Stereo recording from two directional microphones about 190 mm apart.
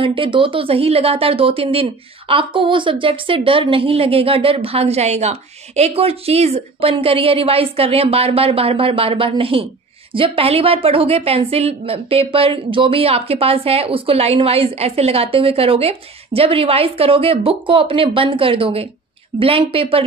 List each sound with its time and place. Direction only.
0.0 s speech: 25° right (ahead or behind)